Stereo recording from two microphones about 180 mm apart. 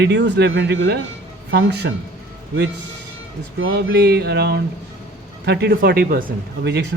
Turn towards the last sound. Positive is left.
turn(degrees=-70)  # may be behind; listen again after turning